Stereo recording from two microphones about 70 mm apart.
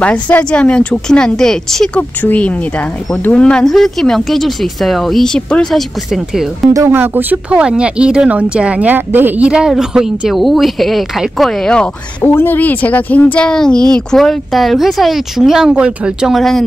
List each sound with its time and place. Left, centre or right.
0.0 s speech: centre
2.0 s speech: left
3.6 s speech: centre
6.9 s speech: right
7.5 s speech: centre
9.7 s speech: centre
12.2 s speech: left
13.5 s speech: centre
15.7 s speech: centre
16.3 s speech: centre